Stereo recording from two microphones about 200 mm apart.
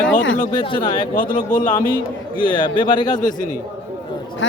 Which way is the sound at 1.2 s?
40° left (ahead or behind).